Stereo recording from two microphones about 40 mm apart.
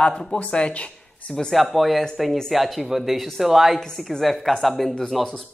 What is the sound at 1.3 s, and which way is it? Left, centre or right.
Speech, centre.